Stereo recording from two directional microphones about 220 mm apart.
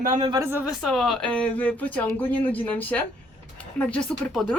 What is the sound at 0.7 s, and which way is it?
Speech, centre (ahead or behind).